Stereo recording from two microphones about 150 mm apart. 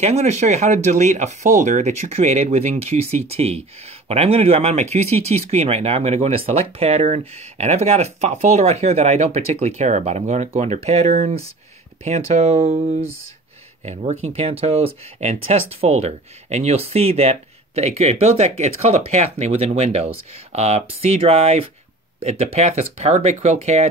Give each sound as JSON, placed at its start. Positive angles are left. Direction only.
{"t": 0.0, "sound": "speech", "side_deg": -45}